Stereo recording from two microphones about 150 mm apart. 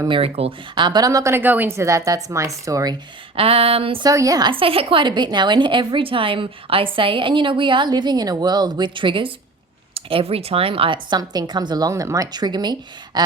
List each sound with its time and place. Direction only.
0.1 s speech: 40° right (ahead or behind); by 2.9 s 20° right (ahead or behind)
3.3 s a woman's voice: 40° right (ahead or behind)
4.1 s a woman's voice: 20° right (ahead or behind)
13.2 s a sound: 30° right (ahead or behind)